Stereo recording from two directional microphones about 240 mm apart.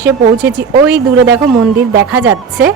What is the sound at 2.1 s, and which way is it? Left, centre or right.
Speech, centre.